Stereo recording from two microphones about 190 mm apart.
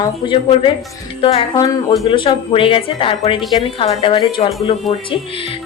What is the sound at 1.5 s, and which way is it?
A woman's voice, 20° left (ahead or behind).